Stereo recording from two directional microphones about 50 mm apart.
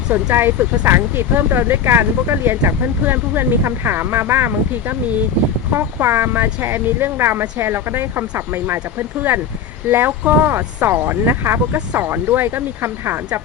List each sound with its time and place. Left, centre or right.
0.1 s speech: right